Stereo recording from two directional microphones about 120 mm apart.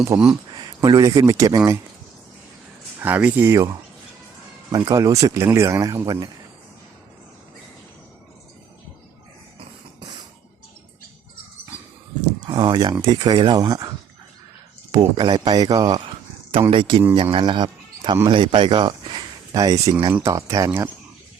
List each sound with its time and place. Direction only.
0.1 s speech: 30° right (ahead or behind)
3.0 s speech: 15° right (ahead or behind)
4.9 s speech: 30° right (ahead or behind)
12.5 s speech: 40° right (ahead or behind)
14.9 s speech: 40° right (ahead or behind)
16.5 s speech: 45° right (ahead or behind); by 20.9 s 25° right (ahead or behind)